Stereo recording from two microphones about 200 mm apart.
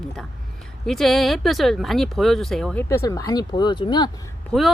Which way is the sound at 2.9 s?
15° left (ahead or behind).